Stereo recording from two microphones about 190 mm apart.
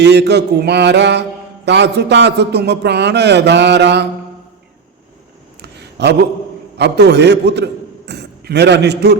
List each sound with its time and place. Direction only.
0.0 s a man's voice: 60° right (ahead or behind)
5.6 s a sound: 60° right (ahead or behind)
6.7 s a man's voice: 60° right (ahead or behind)